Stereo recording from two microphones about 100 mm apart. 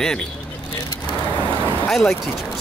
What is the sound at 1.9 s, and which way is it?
Speech, 5° left (ahead or behind).